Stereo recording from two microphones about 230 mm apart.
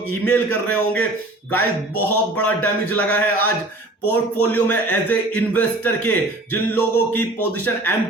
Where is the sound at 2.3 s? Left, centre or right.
Centre.